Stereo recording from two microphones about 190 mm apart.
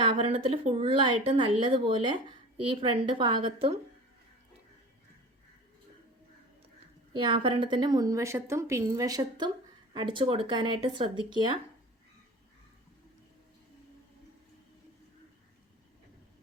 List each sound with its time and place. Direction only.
0.0 s a woman's voice: 25° right (ahead or behind)
7.2 s a woman's voice: 25° right (ahead or behind)